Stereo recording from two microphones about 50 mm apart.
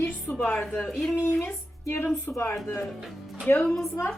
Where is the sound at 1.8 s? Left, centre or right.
Left.